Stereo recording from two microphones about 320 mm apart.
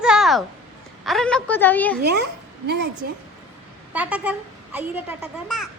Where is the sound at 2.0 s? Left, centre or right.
Right.